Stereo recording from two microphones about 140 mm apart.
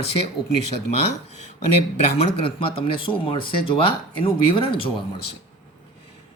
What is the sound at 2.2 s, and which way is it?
Speech, 40° left (ahead or behind).